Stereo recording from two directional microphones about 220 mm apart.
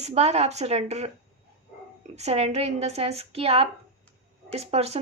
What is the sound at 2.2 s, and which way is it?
A woman's voice, 30° right (ahead or behind).